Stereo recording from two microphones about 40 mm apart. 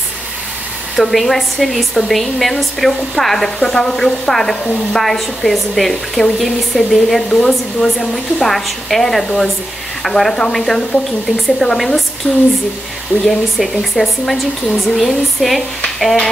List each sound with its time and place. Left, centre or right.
0.9 s speech: centre
12.2 s a sound: left
13.2 s speech: centre